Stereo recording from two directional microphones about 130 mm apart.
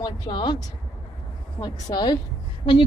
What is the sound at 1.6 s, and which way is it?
Speech, 35° left (ahead or behind).